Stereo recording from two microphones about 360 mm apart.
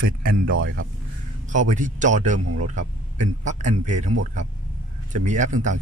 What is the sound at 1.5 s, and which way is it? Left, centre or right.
Speech, right.